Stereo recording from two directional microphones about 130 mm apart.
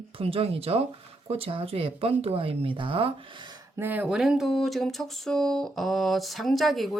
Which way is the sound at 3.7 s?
15° right (ahead or behind).